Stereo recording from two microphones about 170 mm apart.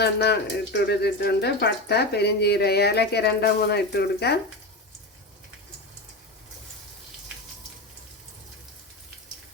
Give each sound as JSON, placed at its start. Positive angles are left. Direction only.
{"t": 0.0, "sound": "speech", "side_deg": 75}